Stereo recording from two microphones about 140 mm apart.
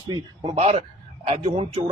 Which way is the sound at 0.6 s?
50° right (ahead or behind).